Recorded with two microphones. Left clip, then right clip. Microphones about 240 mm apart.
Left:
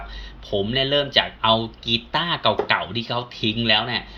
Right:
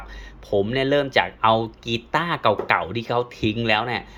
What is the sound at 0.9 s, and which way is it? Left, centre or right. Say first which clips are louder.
Speech: left 1 dB; right.